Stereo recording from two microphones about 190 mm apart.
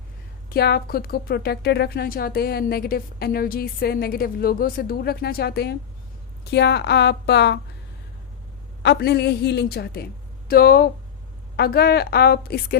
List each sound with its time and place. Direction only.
0.5 s a woman's voice: 55° left (ahead or behind)
8.8 s a woman's voice: 60° left (ahead or behind)